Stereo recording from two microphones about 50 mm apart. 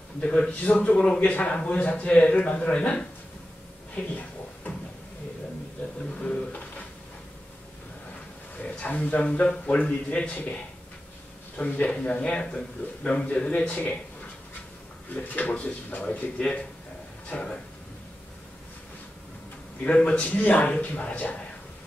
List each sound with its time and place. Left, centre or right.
0.5 s a man's voice: left
3.9 s a sound: left
6.1 s a sound: centre
8.5 s a man's voice: left
15.1 s a man's voice: left
19.8 s a man's voice: left